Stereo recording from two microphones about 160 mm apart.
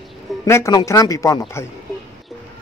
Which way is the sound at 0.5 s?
20° left (ahead or behind).